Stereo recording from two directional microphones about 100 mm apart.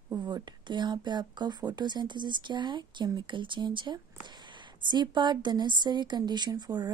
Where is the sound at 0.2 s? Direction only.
50° right (ahead or behind).